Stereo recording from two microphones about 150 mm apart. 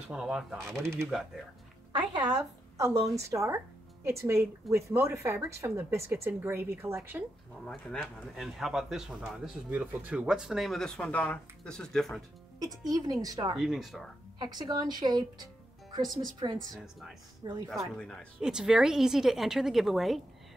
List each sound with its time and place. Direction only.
0.1 s speech: 5° right (ahead or behind)
1.9 s music: 30° right (ahead or behind)
2.3 s a woman's voice: 20° right (ahead or behind)
7.6 s speech: 5° left (ahead or behind)
12.5 s a woman's voice: 25° right (ahead or behind)
13.6 s speech: centre (ahead or behind)
14.4 s a woman's voice: 30° right (ahead or behind)
16.5 s speech: centre (ahead or behind)